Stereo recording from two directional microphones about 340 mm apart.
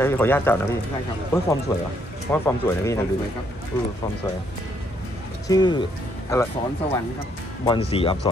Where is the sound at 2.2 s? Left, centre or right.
Centre.